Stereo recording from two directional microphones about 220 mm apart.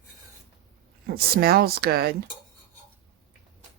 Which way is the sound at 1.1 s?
45° right (ahead or behind).